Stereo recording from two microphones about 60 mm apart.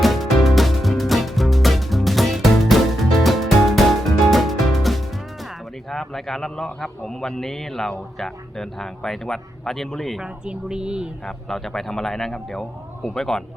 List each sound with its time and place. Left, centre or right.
0.0 s music: centre
5.9 s a man's voice: centre
10.2 s a woman's voice: centre
11.3 s a man's voice: centre